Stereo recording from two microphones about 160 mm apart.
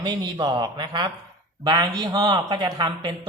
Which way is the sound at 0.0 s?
25° right (ahead or behind).